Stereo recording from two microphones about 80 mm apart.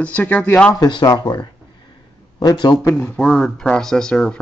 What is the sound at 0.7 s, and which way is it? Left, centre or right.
Speech, left.